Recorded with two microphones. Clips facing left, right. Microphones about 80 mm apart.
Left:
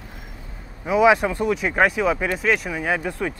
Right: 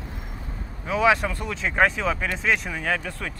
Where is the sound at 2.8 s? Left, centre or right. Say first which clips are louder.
Left 4 dB; centre.